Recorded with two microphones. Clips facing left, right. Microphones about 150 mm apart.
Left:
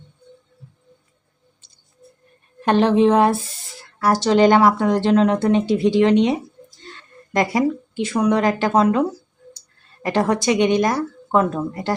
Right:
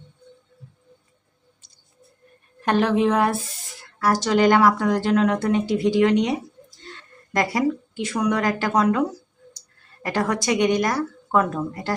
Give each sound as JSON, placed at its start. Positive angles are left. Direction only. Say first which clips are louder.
{"t": 2.6, "sound": "a woman's voice", "louder": "left 4 dB", "side_deg": 25}